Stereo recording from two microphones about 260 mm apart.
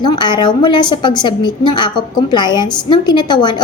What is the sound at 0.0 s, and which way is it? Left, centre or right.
A woman's voice, centre.